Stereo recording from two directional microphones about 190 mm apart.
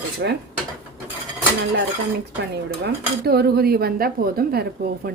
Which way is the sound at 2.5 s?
55° right (ahead or behind).